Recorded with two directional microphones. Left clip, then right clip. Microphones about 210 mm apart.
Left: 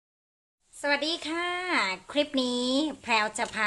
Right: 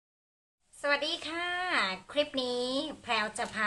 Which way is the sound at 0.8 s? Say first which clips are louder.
Left 2 dB; 15° left (ahead or behind).